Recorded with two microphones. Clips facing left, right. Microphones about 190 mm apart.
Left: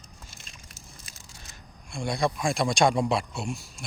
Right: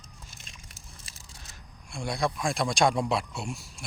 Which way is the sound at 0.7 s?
30° right (ahead or behind).